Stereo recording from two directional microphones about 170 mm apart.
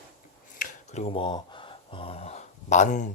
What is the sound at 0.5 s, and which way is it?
Speech, 40° left (ahead or behind).